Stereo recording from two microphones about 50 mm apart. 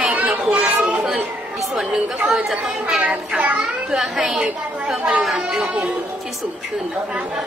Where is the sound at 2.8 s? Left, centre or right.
Centre.